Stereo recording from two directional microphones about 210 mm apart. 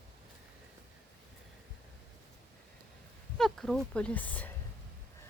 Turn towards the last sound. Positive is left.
turn(degrees=5)  # may be behind; listen again after turning